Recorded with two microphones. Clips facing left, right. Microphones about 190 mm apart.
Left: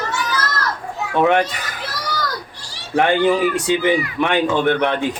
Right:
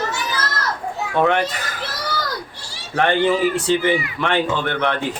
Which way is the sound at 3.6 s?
15° left (ahead or behind).